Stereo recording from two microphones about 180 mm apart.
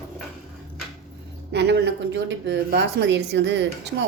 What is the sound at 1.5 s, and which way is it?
Speech, 70° right (ahead or behind).